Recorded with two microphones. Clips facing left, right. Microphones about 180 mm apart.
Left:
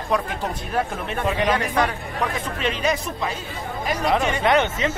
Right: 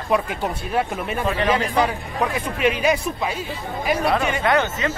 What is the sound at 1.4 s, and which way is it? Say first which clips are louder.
Speech: right 4 dB; 5° right (ahead or behind).